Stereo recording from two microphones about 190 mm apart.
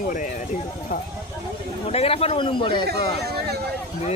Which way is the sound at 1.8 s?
30° left (ahead or behind).